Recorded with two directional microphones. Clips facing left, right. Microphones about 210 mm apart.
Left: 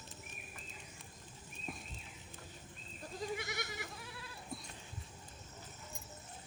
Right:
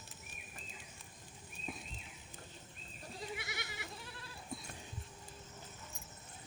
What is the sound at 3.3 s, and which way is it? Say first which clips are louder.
Goat: left 4 dB; 45° left (ahead or behind).